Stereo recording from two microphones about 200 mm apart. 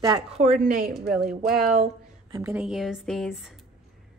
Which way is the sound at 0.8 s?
Centre (ahead or behind).